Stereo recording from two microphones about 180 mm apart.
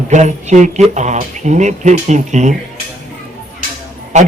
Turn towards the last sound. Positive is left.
turn(degrees=-40)  # may be behind; listen again after turning